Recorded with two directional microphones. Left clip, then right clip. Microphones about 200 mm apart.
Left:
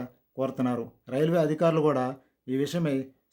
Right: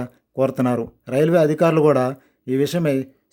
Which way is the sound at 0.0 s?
30° right (ahead or behind).